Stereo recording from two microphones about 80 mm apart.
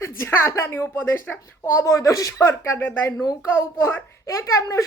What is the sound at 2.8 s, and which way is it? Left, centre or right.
A child's voice, left.